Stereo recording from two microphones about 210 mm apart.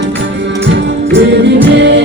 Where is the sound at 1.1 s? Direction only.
55° right (ahead or behind).